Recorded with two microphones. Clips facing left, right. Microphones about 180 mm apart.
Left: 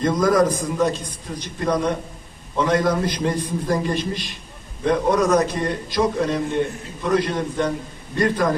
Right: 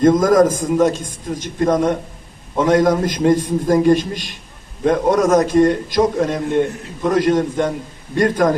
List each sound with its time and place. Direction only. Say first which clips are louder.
0.0 s a man's voice: right 6 dB; 45° right (ahead or behind)